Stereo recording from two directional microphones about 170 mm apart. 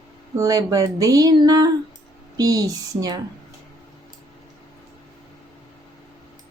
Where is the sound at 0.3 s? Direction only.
20° right (ahead or behind).